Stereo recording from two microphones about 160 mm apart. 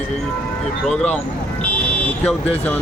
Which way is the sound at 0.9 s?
5° left (ahead or behind).